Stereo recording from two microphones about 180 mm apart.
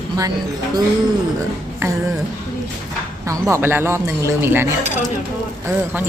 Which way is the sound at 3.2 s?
15° right (ahead or behind).